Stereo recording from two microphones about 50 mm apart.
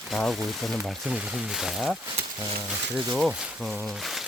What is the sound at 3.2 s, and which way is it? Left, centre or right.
Speech, centre.